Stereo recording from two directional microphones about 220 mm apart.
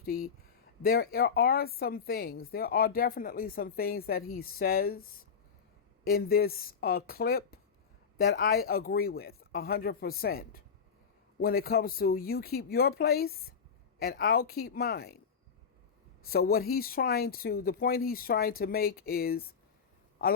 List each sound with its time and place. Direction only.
0.0 s a woman's voice: 40° left (ahead or behind)
6.1 s a woman's voice: 45° left (ahead or behind)
16.3 s a woman's voice: 45° left (ahead or behind)